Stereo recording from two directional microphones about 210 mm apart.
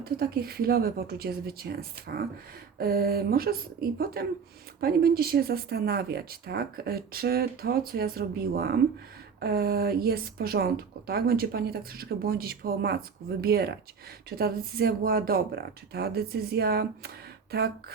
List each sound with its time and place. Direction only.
0.0 s speech: 45° right (ahead or behind)